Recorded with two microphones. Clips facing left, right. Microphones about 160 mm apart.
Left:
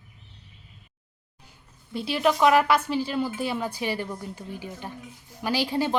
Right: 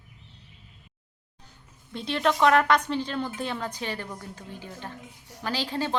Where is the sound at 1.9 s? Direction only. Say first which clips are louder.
Left 2 dB; 5° left (ahead or behind).